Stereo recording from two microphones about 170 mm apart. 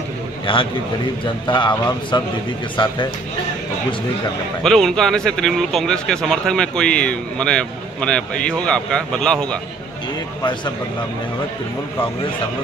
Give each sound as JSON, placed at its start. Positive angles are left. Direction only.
{"t": 0.5, "sound": "a man's voice", "side_deg": 30}
{"t": 4.6, "sound": "speech", "side_deg": 0}